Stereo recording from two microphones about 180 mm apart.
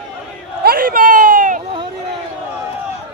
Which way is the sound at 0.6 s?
55° right (ahead or behind).